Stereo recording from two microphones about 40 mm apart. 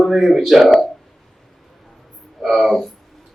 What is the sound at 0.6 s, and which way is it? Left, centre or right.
Speech, centre.